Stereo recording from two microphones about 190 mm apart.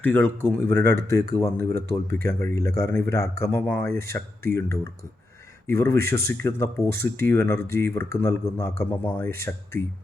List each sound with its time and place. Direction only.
0.0 s speech: 10° left (ahead or behind)